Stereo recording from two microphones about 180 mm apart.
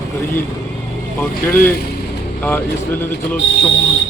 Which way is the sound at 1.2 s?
10° left (ahead or behind).